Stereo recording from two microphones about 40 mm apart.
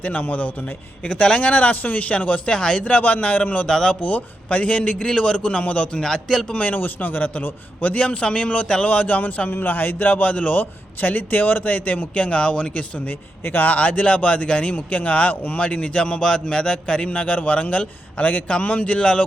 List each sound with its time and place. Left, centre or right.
0.0 s speech: left
1.0 s speech: left
3.7 s a man's voice: left
4.1 s a man's voice: left
6.0 s a man's voice: centre
6.5 s speech: left
6.7 s speech: left
8.9 s speech: left
9.5 s a man's voice: left
13.4 s speech: left
13.7 s speech: left